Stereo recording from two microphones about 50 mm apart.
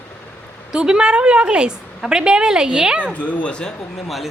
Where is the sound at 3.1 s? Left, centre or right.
Left.